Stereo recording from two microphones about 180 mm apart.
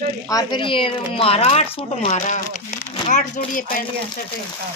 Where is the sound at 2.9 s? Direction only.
45° left (ahead or behind).